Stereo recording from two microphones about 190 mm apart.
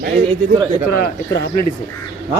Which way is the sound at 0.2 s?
25° right (ahead or behind).